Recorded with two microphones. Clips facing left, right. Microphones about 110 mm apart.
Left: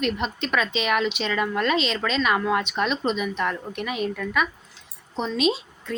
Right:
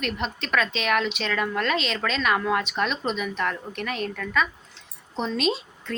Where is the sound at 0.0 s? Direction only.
Centre (ahead or behind).